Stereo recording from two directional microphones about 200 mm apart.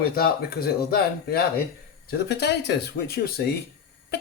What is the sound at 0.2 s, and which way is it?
Speech, 50° left (ahead or behind).